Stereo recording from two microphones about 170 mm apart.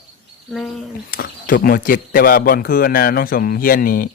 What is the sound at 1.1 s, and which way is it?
Speech, 55° left (ahead or behind).